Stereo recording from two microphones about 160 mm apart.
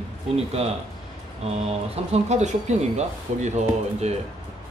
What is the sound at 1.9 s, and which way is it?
Speech, 40° right (ahead or behind).